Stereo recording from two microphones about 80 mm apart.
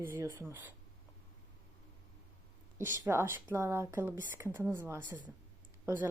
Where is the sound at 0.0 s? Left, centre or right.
Right.